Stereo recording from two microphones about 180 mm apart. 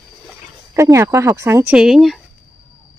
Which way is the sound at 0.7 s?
15° right (ahead or behind).